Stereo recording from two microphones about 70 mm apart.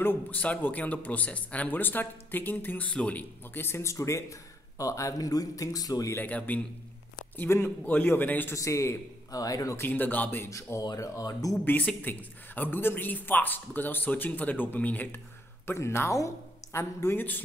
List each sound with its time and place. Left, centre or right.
0.0 s a man's voice: left
6.1 s a man's voice: left
7.4 s a man's voice: left
7.8 s a man's voice: left
8.5 s speech: left
9.8 s a man's voice: left
10.4 s speech: left
11.0 s speech: left
11.6 s a man's voice: left
15.6 s a woman's voice: left